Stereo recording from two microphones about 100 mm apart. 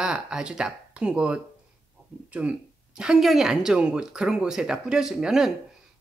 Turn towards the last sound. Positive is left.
turn(degrees=-5)  # may be behind; listen again after turning